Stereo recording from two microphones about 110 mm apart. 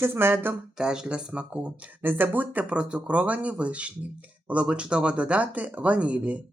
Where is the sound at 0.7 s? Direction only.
5° right (ahead or behind).